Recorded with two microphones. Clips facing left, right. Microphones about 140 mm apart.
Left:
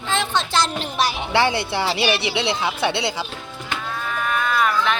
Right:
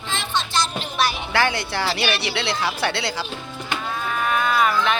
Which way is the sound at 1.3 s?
25° left (ahead or behind).